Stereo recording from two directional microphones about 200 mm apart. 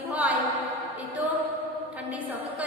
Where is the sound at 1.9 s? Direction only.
5° right (ahead or behind).